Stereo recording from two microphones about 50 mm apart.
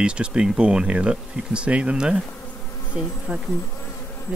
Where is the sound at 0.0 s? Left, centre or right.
Centre.